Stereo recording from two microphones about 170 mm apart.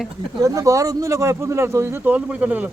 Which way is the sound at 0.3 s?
20° right (ahead or behind).